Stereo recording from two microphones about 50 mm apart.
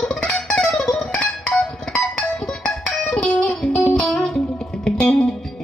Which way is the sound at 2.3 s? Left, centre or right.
Centre.